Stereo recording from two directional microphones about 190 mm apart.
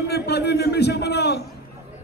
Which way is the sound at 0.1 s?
60° left (ahead or behind).